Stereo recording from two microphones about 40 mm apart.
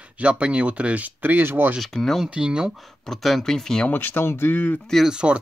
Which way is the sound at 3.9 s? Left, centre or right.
Left.